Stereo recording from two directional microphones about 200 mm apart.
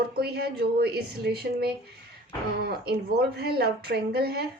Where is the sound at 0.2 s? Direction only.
50° right (ahead or behind).